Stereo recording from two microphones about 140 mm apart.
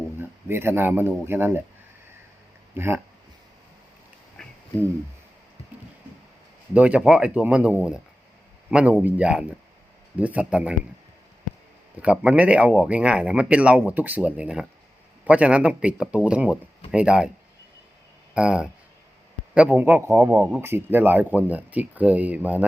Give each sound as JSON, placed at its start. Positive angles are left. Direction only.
{"t": 0.2, "sound": "speech", "side_deg": -15}
{"t": 2.7, "sound": "speech", "side_deg": -20}
{"t": 4.4, "sound": "a sound", "side_deg": 5}
{"t": 6.7, "sound": "speech", "side_deg": -10}
{"t": 11.9, "sound": "speech", "side_deg": -10}
{"t": 18.3, "sound": "speech", "side_deg": -5}